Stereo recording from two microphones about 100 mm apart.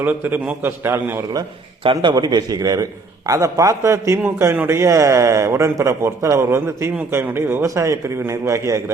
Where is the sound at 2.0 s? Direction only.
45° right (ahead or behind).